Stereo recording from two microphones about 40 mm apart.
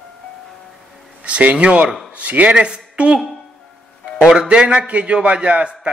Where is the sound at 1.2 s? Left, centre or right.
Right.